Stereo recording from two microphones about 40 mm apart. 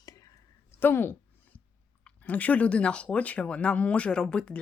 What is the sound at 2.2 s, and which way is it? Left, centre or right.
Speech, left.